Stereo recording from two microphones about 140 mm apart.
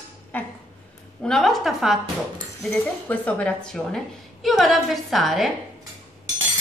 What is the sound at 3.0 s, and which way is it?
A woman's voice, 10° left (ahead or behind).